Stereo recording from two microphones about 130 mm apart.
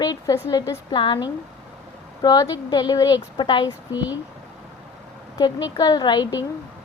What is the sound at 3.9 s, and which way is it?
Speech, 15° right (ahead or behind).